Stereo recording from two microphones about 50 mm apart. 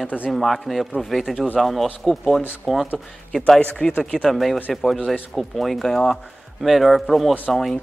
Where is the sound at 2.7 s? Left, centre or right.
Centre.